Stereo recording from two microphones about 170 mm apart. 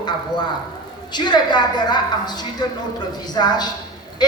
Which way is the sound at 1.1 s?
25° left (ahead or behind).